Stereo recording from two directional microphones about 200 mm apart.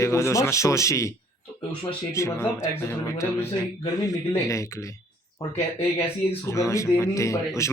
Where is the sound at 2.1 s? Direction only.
15° left (ahead or behind).